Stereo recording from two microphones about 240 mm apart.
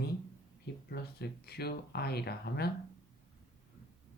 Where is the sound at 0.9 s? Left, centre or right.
Left.